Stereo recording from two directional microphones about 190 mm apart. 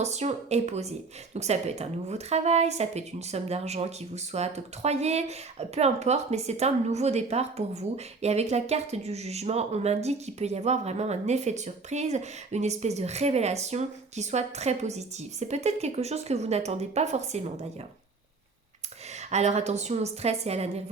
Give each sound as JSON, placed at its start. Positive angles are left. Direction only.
{"t": 0.0, "sound": "speech", "side_deg": -35}
{"t": 19.3, "sound": "speech", "side_deg": -35}